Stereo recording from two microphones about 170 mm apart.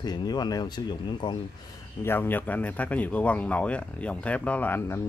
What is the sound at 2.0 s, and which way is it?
Speech, 10° left (ahead or behind).